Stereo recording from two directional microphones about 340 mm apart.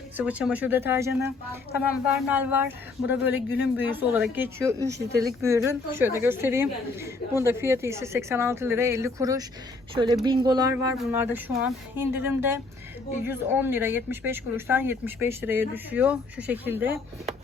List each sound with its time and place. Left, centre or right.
0.2 s speech: centre
4.9 s speech: right
5.2 s a woman's voice: centre